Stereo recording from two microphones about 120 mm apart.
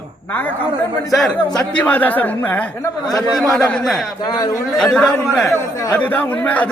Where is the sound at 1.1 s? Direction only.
5° left (ahead or behind).